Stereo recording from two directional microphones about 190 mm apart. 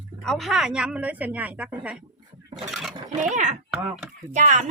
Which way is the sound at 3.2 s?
40° right (ahead or behind).